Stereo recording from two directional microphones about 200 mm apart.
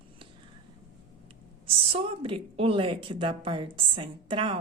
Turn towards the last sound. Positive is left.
turn(degrees=-25)  # may be behind; listen again after turning